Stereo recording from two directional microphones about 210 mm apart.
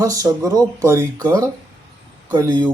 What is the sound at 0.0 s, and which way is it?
Speech, 15° right (ahead or behind).